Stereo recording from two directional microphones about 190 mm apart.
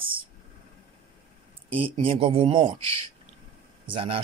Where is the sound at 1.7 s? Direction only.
30° right (ahead or behind).